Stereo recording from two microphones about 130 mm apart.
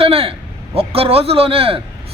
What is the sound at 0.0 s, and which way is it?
A man's voice, 45° right (ahead or behind).